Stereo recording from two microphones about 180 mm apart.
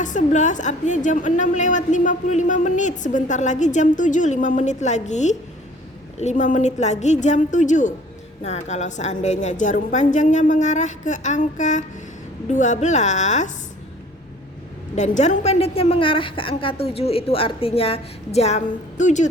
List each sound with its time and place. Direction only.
0.0 s a woman's voice: 45° left (ahead or behind)
14.9 s a woman's voice: 40° left (ahead or behind)